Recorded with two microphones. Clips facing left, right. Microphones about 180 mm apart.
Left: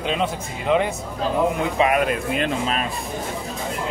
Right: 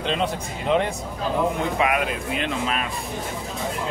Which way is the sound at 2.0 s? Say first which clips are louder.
Left 4 dB; 45° left (ahead or behind).